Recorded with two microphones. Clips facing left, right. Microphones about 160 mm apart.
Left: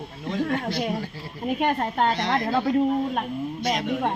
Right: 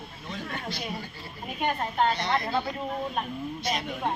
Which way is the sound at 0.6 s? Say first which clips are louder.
Left 8 dB; 55° left (ahead or behind).